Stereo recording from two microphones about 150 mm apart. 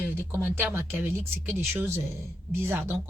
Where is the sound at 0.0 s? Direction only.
15° right (ahead or behind).